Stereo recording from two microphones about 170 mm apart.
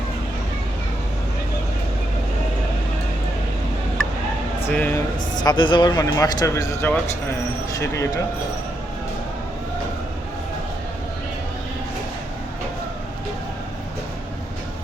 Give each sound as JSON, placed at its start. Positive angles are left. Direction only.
{"t": 4.7, "sound": "speech", "side_deg": 10}
{"t": 5.3, "sound": "speech", "side_deg": 25}